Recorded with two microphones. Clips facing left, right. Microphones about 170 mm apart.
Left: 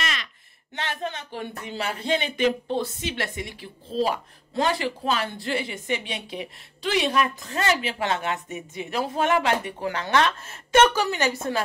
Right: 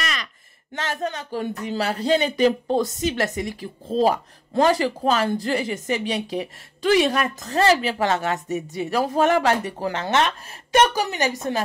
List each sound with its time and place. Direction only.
0.7 s speech: 40° right (ahead or behind)
9.9 s a woman's voice: 25° right (ahead or behind)